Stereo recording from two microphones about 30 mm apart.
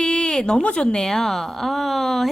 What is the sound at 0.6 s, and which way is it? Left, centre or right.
Speech, left.